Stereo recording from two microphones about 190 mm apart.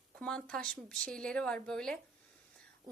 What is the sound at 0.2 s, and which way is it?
A woman's voice, 5° left (ahead or behind).